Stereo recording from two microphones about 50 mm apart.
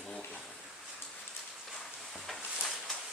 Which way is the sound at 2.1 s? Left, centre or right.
Centre.